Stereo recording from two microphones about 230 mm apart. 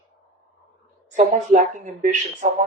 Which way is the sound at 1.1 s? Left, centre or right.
Right.